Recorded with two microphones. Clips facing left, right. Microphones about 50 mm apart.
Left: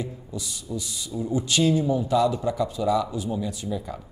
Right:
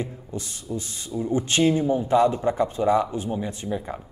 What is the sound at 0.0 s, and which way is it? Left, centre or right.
Speech, right.